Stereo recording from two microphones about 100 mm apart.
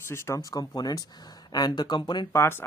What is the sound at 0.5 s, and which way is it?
Speech, 40° left (ahead or behind).